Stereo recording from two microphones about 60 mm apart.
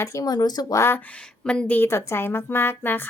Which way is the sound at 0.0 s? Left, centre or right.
Left.